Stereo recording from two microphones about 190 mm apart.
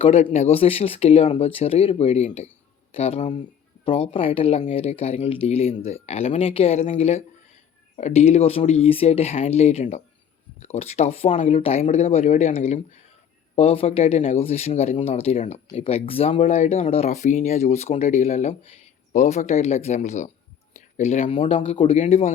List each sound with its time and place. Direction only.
0.0 s speech: 30° left (ahead or behind)